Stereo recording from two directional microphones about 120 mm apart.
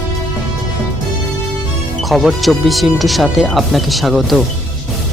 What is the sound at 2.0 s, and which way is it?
Speech, centre (ahead or behind).